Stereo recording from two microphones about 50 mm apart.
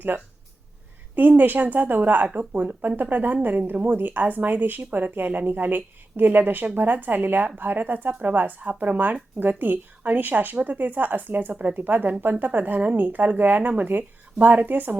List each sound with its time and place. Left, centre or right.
0.1 s speech: right